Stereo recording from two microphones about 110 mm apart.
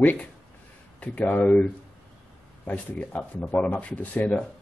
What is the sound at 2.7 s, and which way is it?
Speech, 15° left (ahead or behind).